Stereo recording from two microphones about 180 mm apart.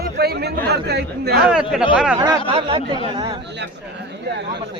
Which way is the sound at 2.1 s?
20° right (ahead or behind).